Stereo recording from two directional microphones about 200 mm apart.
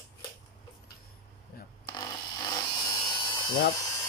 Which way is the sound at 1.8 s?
20° left (ahead or behind).